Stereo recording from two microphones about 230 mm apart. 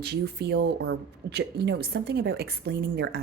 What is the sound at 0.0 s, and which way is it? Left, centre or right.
Speech, right.